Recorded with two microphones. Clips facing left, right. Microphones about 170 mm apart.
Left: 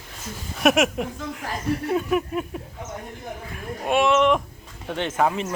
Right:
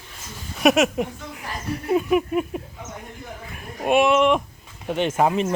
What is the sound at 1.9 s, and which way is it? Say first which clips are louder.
Speech: right 6 dB; 10° right (ahead or behind).